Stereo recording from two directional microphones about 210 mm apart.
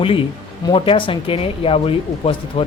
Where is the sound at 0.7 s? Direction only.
25° left (ahead or behind).